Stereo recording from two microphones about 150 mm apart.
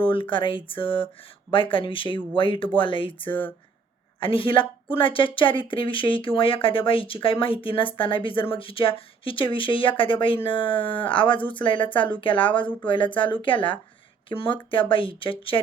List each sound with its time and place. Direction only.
0.0 s speech: 35° left (ahead or behind)